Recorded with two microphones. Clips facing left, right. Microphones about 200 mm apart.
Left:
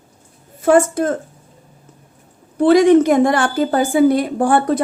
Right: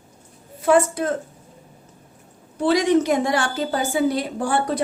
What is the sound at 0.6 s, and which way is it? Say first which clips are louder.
Speech: left 4 dB; 45° left (ahead or behind).